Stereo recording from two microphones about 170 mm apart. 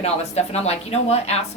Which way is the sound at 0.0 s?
40° left (ahead or behind).